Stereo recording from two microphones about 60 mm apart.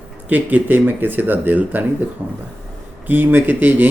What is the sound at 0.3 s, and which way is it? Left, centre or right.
Speech, right.